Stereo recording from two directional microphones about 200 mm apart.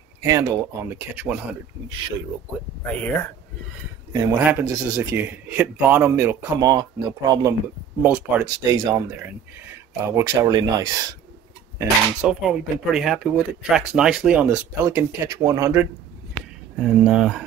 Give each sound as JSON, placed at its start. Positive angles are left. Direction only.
{"t": 0.2, "sound": "speech", "side_deg": -15}
{"t": 2.9, "sound": "speech", "side_deg": 5}
{"t": 4.4, "sound": "speech", "side_deg": -10}
{"t": 8.0, "sound": "speech", "side_deg": -10}
{"t": 11.8, "sound": "speech", "side_deg": -5}
{"t": 16.8, "sound": "speech", "side_deg": -5}